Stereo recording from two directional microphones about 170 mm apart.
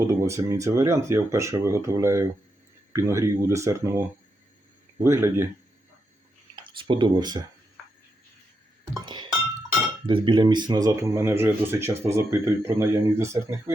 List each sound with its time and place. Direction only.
0.0 s speech: 15° right (ahead or behind)
5.0 s speech: 15° right (ahead or behind)
6.7 s speech: 30° right (ahead or behind)
9.0 s speech: 25° right (ahead or behind)